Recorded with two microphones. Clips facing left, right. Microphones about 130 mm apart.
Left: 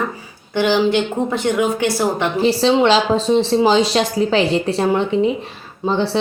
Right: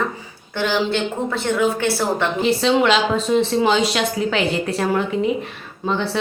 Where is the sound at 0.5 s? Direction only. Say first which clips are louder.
Left 5 dB; 15° left (ahead or behind).